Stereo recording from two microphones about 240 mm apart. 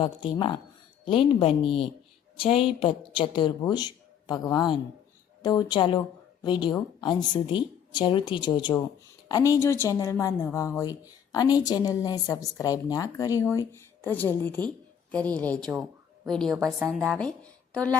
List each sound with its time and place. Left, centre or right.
0.0 s a woman's voice: left; by 17.3 s centre